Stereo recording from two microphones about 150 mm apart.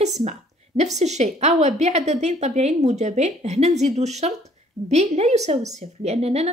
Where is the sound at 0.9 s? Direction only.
50° right (ahead or behind).